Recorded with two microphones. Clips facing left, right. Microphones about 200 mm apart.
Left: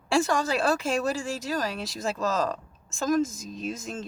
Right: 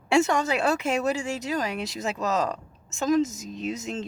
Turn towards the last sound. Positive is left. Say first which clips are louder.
# right 3 dB
turn(degrees=-20)  # may be behind; listen again after turning